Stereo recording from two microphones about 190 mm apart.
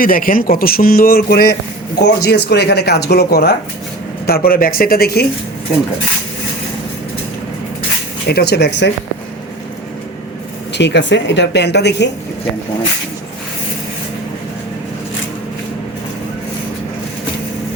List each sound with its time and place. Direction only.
0.0 s speech: 50° left (ahead or behind)
8.3 s speech: 55° left (ahead or behind)
10.8 s speech: 65° left (ahead or behind)